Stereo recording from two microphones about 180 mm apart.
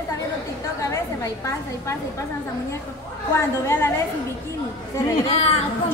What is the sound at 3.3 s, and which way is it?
Speech, 15° left (ahead or behind).